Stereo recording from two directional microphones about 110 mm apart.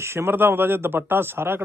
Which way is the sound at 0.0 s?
25° right (ahead or behind).